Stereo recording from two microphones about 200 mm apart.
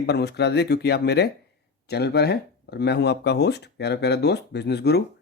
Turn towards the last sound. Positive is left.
turn(degrees=55)  # may be behind; listen again after turning